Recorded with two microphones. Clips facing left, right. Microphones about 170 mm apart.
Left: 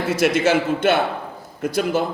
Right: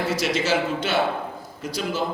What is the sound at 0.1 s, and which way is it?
A man's voice, 55° left (ahead or behind).